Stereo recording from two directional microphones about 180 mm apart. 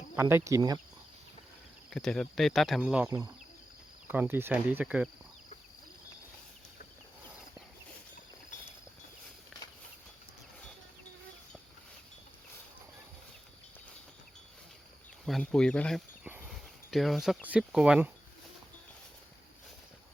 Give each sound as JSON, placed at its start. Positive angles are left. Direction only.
{"t": 0.2, "sound": "speech", "side_deg": -15}
{"t": 1.9, "sound": "speech", "side_deg": 5}
{"t": 9.5, "sound": "walk", "side_deg": 0}
{"t": 15.3, "sound": "speech", "side_deg": 5}